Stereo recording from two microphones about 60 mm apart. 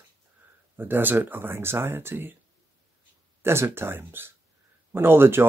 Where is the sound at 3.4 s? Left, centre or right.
Right.